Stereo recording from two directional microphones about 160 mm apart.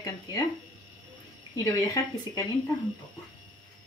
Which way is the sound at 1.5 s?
20° left (ahead or behind).